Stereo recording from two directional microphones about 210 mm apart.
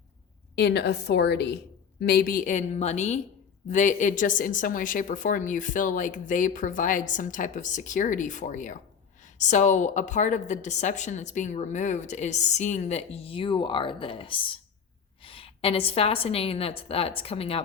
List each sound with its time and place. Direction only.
0.5 s a woman's voice: 55° left (ahead or behind); by 17.6 s 30° left (ahead or behind)